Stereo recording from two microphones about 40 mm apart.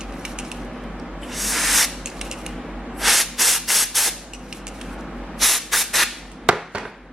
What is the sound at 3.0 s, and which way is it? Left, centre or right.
Spray, centre.